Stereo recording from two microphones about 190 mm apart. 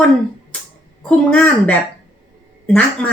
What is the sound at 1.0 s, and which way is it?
Speech, 5° left (ahead or behind).